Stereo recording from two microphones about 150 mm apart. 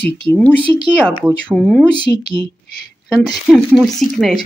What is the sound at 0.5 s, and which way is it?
Speech, 35° right (ahead or behind).